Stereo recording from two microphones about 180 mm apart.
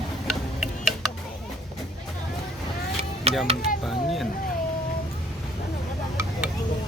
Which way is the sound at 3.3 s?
35° right (ahead or behind).